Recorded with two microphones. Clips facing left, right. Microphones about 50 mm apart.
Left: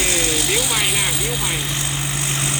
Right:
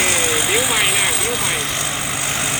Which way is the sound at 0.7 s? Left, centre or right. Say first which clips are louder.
Right 3 dB; centre.